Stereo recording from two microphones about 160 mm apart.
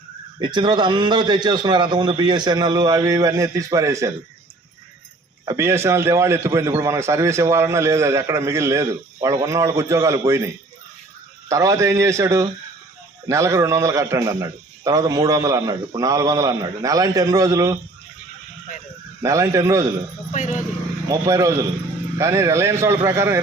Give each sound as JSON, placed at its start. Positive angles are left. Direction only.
{"t": 0.3, "sound": "a man's voice", "side_deg": -30}
{"t": 5.5, "sound": "a man's voice", "side_deg": -15}
{"t": 19.2, "sound": "a man's voice", "side_deg": -20}
{"t": 20.3, "sound": "speech", "side_deg": 50}
{"t": 21.1, "sound": "a man's voice", "side_deg": -20}